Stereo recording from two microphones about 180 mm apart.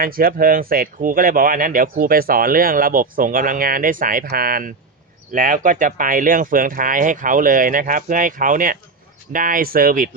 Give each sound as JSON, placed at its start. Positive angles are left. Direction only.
{"t": 0.0, "sound": "speech", "side_deg": -55}